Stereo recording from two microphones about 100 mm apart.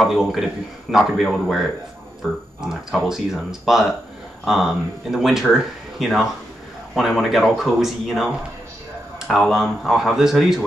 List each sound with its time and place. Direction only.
0.0 s speech: centre (ahead or behind)
9.5 s speech: 5° right (ahead or behind)